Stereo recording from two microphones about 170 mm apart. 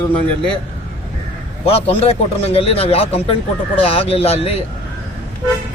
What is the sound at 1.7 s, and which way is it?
Speech, 35° left (ahead or behind).